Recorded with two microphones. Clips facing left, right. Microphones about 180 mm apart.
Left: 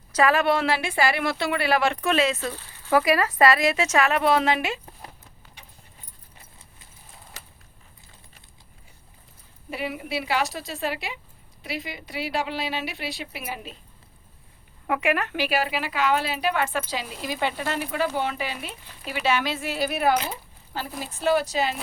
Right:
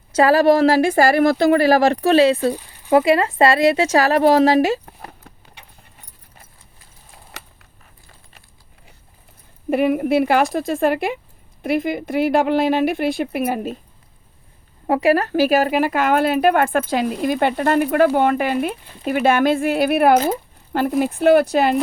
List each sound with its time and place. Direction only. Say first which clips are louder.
0.1 s speech: right 7 dB; 30° right (ahead or behind)
2.5 s a sound: right 12 dB; 15° right (ahead or behind)
2.9 s speech: right 6 dB; 25° right (ahead or behind)
5.0 s clip-clop: right 6 dB; 65° right (ahead or behind)
9.6 s speech: right 14 dB; 55° right (ahead or behind)
14.8 s speech: right 8 dB; 35° right (ahead or behind); by 21.8 s 55° right (ahead or behind)